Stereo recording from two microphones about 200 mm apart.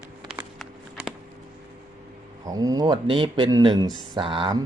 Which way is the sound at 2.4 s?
20° right (ahead or behind).